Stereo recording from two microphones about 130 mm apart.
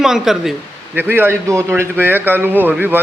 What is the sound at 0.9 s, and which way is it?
Speech, 15° right (ahead or behind).